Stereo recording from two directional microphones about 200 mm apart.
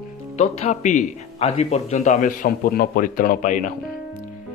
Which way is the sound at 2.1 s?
45° left (ahead or behind).